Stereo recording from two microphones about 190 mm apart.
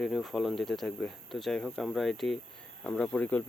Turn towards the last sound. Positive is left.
turn(degrees=10)  # may be behind; listen again after turning